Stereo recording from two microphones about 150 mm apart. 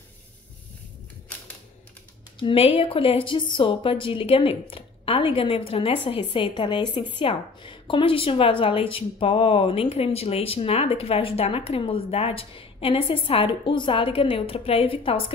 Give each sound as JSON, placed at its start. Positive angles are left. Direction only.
{"t": 2.3, "sound": "a woman's voice", "side_deg": 35}